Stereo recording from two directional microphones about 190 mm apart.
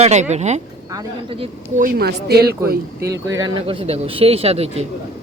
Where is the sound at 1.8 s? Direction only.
50° right (ahead or behind).